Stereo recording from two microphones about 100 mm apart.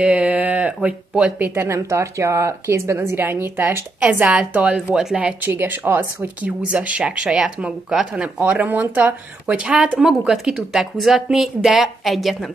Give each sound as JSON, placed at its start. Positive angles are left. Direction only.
{"t": 0.0, "sound": "speech", "side_deg": -15}
{"t": 1.5, "sound": "a woman's voice", "side_deg": -25}
{"t": 4.0, "sound": "speech", "side_deg": -15}